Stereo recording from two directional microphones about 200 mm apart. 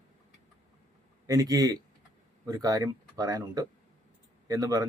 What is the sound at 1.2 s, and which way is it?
Speech, 20° right (ahead or behind).